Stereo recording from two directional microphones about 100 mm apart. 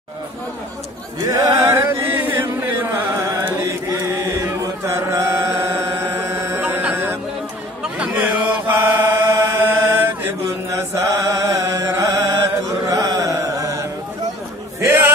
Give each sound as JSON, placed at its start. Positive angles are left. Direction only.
{"t": 1.2, "sound": "chant", "side_deg": -35}
{"t": 10.7, "sound": "chant", "side_deg": -35}
{"t": 14.8, "sound": "a sound", "side_deg": -25}